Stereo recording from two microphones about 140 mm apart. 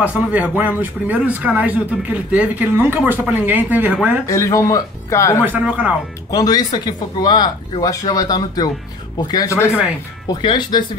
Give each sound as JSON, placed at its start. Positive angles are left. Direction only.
{"t": 0.0, "sound": "speech", "side_deg": -10}
{"t": 4.3, "sound": "speech", "side_deg": 20}
{"t": 5.4, "sound": "speech", "side_deg": -10}
{"t": 6.3, "sound": "speech", "side_deg": 25}